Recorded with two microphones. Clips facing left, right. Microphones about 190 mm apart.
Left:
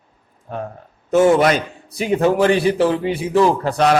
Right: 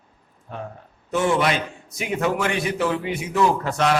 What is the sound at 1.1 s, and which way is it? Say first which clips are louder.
A man's voice: left 7 dB; 40° left (ahead or behind).